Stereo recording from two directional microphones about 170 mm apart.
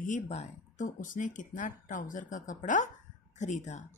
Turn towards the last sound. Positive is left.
turn(degrees=45)  # may be behind; listen again after turning